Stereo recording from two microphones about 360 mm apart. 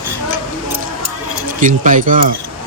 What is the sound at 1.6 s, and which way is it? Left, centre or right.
Speech, right.